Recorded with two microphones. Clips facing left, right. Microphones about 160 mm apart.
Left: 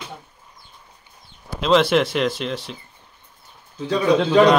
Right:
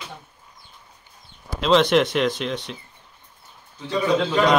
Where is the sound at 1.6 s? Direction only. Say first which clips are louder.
Even; centre (ahead or behind).